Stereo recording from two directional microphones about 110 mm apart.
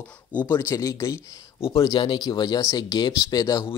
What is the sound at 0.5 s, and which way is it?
Speech, 25° left (ahead or behind).